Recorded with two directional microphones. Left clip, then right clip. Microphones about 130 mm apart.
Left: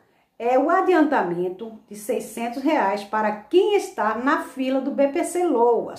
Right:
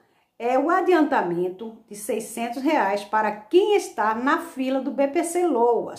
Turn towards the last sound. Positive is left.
turn(degrees=-15)  # may be behind; listen again after turning